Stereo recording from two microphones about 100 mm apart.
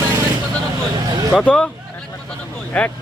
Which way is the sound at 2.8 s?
10° left (ahead or behind).